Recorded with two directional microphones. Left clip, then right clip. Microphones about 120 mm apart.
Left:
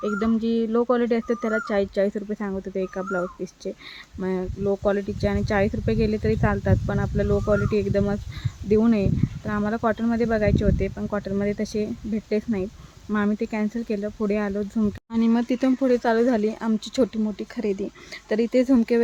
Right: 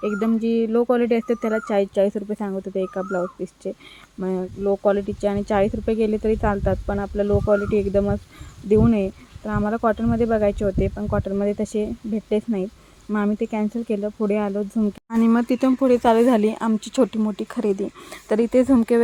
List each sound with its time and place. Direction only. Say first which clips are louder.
0.4 s speech: right 3 dB; 15° right (ahead or behind)
3.0 s speech: right 2 dB; 5° right (ahead or behind)
10.9 s speech: right 3 dB; 10° right (ahead or behind)
11.4 s speech: right 3 dB; 20° right (ahead or behind)
13.1 s speech: right 2 dB; 10° right (ahead or behind)
14.8 s speech: right 4 dB; 5° right (ahead or behind)
16.0 s speech: right 4 dB; 30° right (ahead or behind)
16.6 s speech: right 3 dB; 10° right (ahead or behind)
17.2 s speech: right 4 dB; 20° right (ahead or behind)